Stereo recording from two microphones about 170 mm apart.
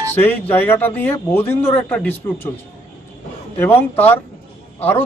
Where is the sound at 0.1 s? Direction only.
10° left (ahead or behind).